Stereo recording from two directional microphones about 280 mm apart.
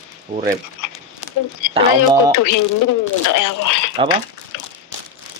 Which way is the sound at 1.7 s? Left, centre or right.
Centre.